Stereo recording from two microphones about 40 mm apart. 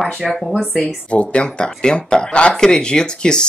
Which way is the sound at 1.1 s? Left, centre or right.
Left.